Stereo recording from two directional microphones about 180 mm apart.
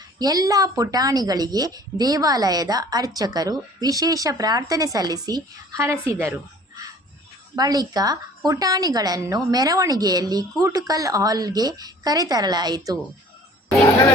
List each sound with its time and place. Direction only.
0.2 s a woman's voice: 20° right (ahead or behind)